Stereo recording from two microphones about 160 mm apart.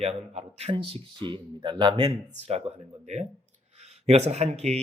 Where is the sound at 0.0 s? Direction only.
40° right (ahead or behind).